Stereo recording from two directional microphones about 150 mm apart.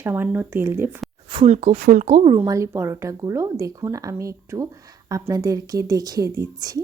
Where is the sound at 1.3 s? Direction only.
30° right (ahead or behind).